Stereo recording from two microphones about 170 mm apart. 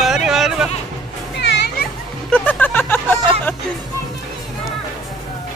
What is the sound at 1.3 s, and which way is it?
Children playing, 90° left.